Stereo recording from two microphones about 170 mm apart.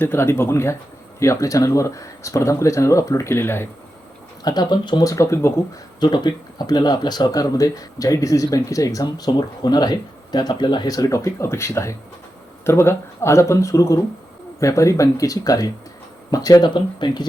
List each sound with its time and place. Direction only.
0.0 s speech: 15° left (ahead or behind)
4.4 s speech: 25° left (ahead or behind)